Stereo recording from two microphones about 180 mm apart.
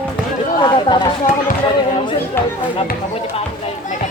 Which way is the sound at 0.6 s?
25° left (ahead or behind).